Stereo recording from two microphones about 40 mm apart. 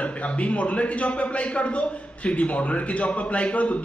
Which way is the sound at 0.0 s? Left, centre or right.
Left.